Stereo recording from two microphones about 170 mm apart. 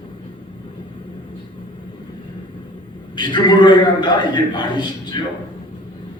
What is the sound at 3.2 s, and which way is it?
A man's voice, 25° left (ahead or behind).